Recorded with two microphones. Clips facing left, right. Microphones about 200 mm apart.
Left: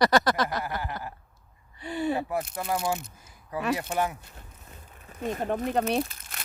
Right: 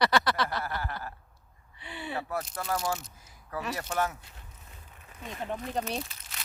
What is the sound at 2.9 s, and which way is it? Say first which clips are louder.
Speech: left 3 dB; 55° left (ahead or behind).